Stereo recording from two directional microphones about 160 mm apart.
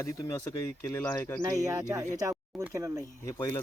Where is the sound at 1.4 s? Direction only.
20° right (ahead or behind).